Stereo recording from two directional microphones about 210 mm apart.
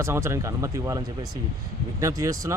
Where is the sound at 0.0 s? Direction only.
10° right (ahead or behind).